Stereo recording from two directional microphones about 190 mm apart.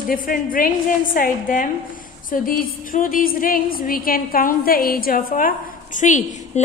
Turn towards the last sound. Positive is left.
turn(degrees=40)  # may be behind; listen again after turning